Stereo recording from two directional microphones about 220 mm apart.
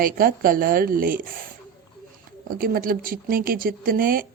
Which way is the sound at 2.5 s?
40° right (ahead or behind).